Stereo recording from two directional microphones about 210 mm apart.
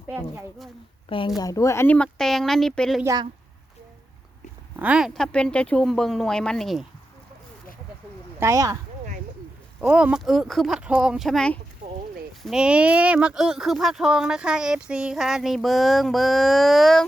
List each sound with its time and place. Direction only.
1.4 s speech: 15° left (ahead or behind)
3.0 s speech: 15° right (ahead or behind)
4.8 s speech: 5° right (ahead or behind)
8.4 s speech: 15° right (ahead or behind)
9.8 s speech: 5° right (ahead or behind)